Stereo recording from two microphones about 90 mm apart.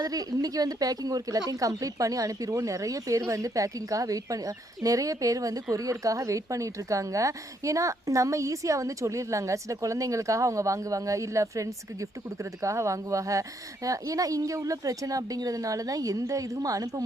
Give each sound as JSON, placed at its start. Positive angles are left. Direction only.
{"t": 0.0, "sound": "speech", "side_deg": -45}